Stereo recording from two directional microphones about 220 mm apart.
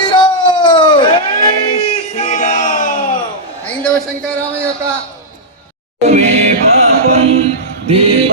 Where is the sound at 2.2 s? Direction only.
30° left (ahead or behind).